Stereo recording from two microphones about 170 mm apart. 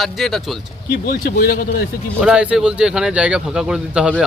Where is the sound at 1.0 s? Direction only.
60° left (ahead or behind).